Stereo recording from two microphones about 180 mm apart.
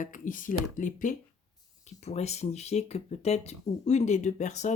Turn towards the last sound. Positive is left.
turn(degrees=40)  # may be behind; listen again after turning